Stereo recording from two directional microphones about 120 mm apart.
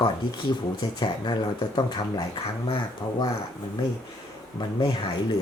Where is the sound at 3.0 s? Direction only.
30° left (ahead or behind).